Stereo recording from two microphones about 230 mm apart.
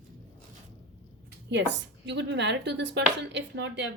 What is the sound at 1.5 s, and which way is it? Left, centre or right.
Speech, right.